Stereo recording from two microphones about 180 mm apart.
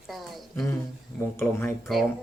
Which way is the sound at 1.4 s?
15° left (ahead or behind).